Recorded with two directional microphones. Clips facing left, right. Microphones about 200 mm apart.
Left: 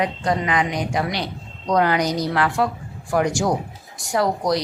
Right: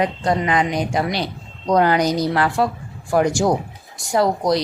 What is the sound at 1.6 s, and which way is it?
A woman's voice, 30° right (ahead or behind).